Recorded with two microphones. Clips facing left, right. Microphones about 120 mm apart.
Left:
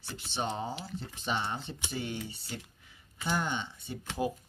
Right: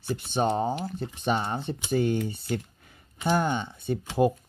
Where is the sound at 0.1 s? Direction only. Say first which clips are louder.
Right 10 dB; 50° right (ahead or behind).